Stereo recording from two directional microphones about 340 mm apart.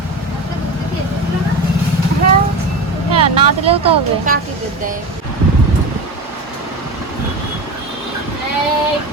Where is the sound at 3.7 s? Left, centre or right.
Centre.